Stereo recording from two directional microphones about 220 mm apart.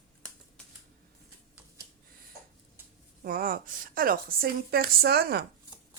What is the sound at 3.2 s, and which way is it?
Speech, 40° right (ahead or behind).